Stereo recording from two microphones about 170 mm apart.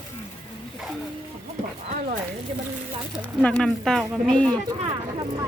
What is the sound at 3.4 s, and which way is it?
Speech, 5° left (ahead or behind).